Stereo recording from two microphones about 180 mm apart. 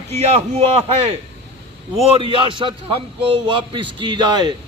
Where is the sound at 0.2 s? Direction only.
35° right (ahead or behind).